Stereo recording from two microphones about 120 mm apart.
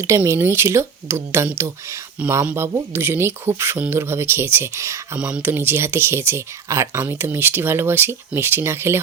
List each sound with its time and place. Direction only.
0.2 s speech: 20° right (ahead or behind)
5.1 s speech: 10° right (ahead or behind)